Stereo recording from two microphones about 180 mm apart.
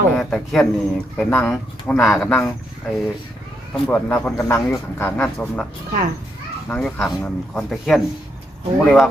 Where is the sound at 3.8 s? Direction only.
10° left (ahead or behind).